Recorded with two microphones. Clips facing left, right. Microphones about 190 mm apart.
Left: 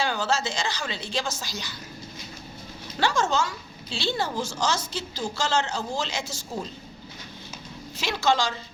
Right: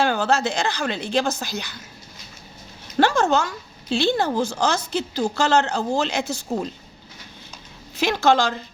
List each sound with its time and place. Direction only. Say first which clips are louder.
0.0 s a woman's voice: right 6 dB; 60° right (ahead or behind)
3.0 s a woman's voice: right 6 dB; 60° right (ahead or behind)
7.9 s a woman's voice: right 6 dB; 60° right (ahead or behind)